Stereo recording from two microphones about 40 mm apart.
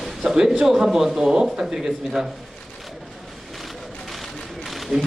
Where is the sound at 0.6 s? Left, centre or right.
Centre.